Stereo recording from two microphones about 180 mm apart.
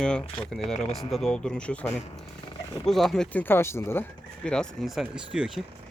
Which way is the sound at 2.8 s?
Centre (ahead or behind).